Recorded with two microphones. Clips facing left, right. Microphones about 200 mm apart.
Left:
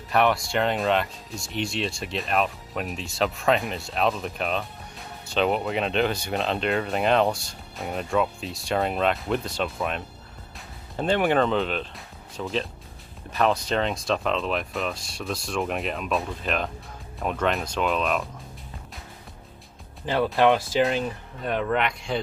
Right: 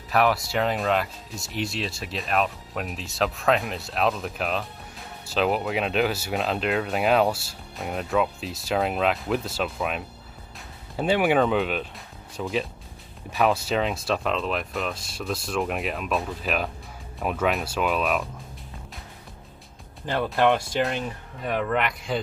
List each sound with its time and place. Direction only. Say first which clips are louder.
0.1 s speech: even; centre (ahead or behind)
20.2 s speech: left 2 dB; 5° left (ahead or behind)